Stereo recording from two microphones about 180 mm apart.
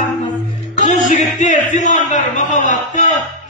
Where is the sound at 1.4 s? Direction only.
40° left (ahead or behind).